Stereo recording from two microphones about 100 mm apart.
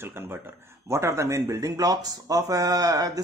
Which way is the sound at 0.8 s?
30° right (ahead or behind).